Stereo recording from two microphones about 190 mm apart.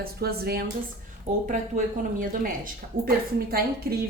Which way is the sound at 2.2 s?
45° right (ahead or behind).